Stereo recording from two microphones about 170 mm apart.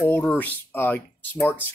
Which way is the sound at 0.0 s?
10° left (ahead or behind).